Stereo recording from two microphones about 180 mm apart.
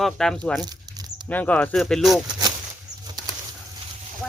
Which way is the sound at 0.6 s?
20° right (ahead or behind).